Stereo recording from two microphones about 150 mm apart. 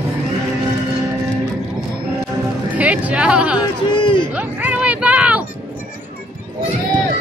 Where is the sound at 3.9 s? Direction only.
30° left (ahead or behind).